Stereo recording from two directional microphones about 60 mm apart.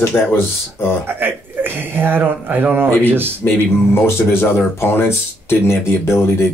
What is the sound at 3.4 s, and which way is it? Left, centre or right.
Speech, left.